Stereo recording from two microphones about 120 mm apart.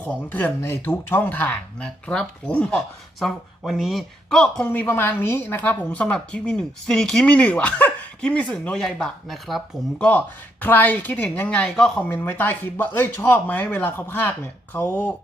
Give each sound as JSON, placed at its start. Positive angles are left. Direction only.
{"t": 0.0, "sound": "speech", "side_deg": 15}
{"t": 4.7, "sound": "speech", "side_deg": 15}
{"t": 10.1, "sound": "speech", "side_deg": 15}